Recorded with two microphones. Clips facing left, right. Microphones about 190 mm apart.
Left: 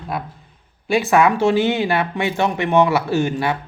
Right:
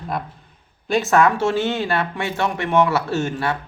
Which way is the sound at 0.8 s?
10° left (ahead or behind).